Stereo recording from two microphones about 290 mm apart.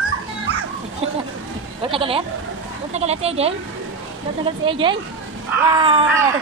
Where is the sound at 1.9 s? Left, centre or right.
Centre.